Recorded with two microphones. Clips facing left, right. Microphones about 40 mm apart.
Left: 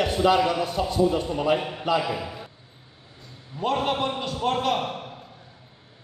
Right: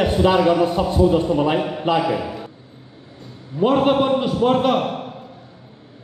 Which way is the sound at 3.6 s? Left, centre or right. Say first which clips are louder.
Right 8 dB; centre.